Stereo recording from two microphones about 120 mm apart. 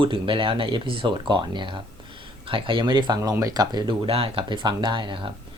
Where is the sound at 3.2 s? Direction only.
25° right (ahead or behind).